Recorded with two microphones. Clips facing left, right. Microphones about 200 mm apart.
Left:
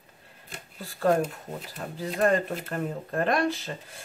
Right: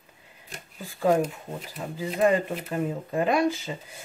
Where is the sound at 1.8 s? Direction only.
5° right (ahead or behind).